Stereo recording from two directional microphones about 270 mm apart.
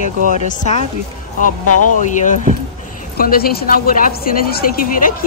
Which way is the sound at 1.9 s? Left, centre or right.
Left.